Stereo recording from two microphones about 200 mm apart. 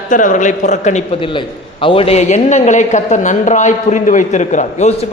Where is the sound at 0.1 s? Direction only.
40° left (ahead or behind).